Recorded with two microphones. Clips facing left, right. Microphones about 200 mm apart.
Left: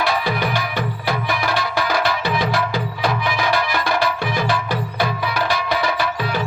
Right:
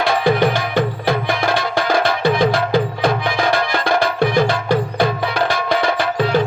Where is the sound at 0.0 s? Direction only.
50° right (ahead or behind).